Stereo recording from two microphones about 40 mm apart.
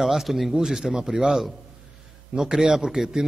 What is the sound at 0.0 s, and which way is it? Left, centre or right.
A man's voice, centre.